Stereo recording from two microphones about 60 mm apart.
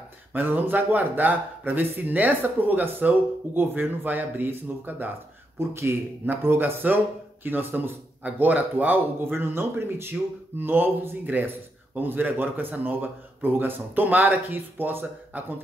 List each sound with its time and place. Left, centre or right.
0.3 s speech: right
5.6 s speech: right